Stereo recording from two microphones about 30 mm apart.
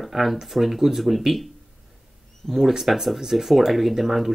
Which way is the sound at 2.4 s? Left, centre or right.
Left.